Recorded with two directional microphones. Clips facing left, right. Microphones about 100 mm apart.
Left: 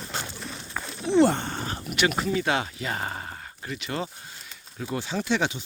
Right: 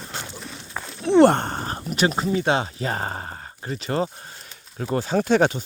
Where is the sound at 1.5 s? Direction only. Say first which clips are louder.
Right 3 dB; 40° right (ahead or behind).